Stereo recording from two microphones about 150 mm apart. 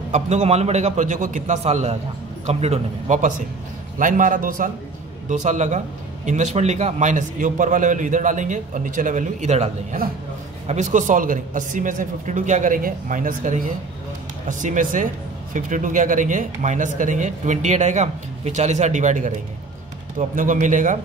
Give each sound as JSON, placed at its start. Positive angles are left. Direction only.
{"t": 0.1, "sound": "a man's voice", "side_deg": -45}
{"t": 5.3, "sound": "a man's voice", "side_deg": -55}
{"t": 10.7, "sound": "speech", "side_deg": -55}